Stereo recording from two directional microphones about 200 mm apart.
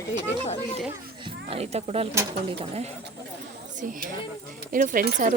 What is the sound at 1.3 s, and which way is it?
Speech, 30° right (ahead or behind).